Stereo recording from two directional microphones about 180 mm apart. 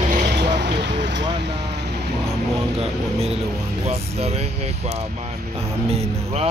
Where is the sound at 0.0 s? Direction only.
45° right (ahead or behind).